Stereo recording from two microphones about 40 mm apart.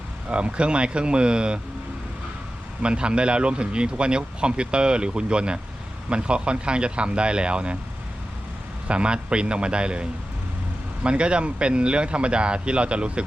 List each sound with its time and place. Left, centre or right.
0.3 s a man's voice: right
2.8 s a man's voice: right
8.9 s a man's voice: right